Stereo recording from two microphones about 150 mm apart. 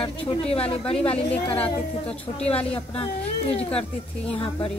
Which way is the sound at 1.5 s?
10° left (ahead or behind).